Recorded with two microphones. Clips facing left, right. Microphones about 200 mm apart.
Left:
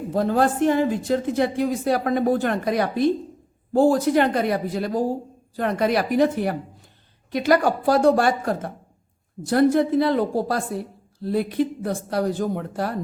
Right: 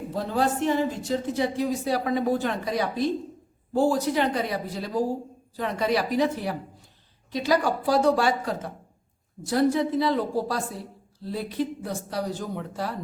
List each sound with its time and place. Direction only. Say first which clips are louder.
0.1 s a woman's voice: left 5 dB; 50° left (ahead or behind)